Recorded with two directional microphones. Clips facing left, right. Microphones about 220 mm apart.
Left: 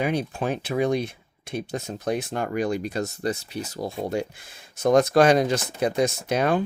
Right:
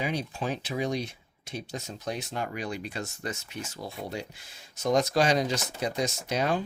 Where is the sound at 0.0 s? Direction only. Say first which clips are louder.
Left 6 dB; 55° left (ahead or behind).